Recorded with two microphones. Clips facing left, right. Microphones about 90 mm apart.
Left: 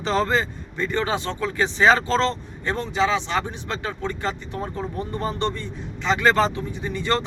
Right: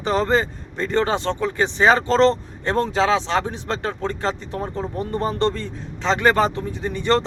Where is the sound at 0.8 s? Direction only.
35° right (ahead or behind).